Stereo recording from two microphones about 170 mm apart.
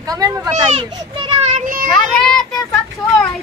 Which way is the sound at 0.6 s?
35° right (ahead or behind).